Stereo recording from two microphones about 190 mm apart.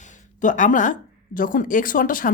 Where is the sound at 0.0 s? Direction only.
40° left (ahead or behind).